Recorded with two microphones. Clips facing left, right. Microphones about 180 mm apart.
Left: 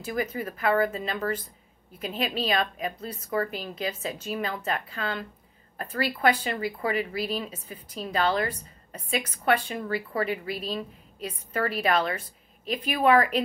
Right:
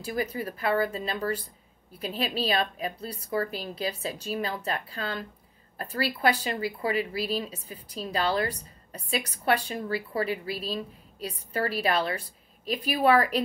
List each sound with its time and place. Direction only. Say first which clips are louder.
0.0 s a woman's voice: left 1 dB; 35° right (ahead or behind)